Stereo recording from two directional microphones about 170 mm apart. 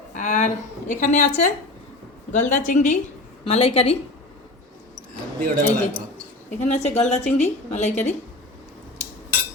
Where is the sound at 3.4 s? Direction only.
35° left (ahead or behind).